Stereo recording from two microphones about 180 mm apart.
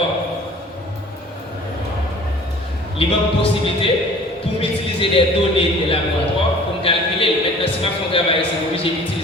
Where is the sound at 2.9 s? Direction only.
30° left (ahead or behind).